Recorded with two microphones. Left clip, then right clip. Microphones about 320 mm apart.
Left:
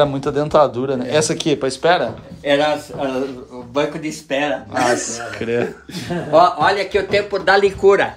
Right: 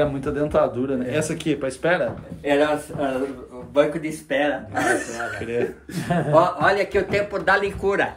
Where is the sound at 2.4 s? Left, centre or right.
Left.